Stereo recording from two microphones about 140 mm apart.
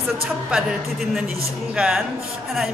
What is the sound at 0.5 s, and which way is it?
Speech, centre (ahead or behind).